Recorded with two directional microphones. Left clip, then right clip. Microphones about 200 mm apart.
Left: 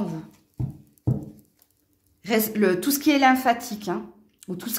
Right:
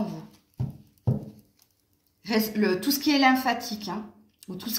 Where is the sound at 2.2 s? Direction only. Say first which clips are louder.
Left 4 dB; 50° left (ahead or behind).